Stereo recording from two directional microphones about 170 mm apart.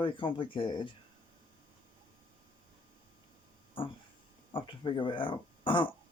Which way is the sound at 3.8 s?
30° left (ahead or behind).